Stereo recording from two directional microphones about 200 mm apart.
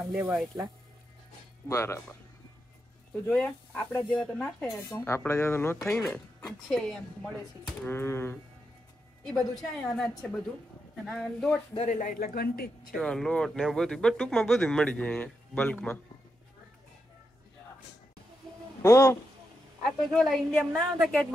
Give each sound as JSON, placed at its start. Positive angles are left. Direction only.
{"t": 0.1, "sound": "speech", "side_deg": -10}
{"t": 1.7, "sound": "speech", "side_deg": 15}
{"t": 3.3, "sound": "speech", "side_deg": 5}
{"t": 11.8, "sound": "speech", "side_deg": 40}
{"t": 12.9, "sound": "speech", "side_deg": 0}
{"t": 18.8, "sound": "speech", "side_deg": 15}
{"t": 20.1, "sound": "speech", "side_deg": 5}